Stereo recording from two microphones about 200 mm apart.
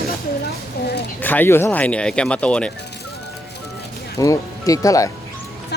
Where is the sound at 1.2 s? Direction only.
10° left (ahead or behind).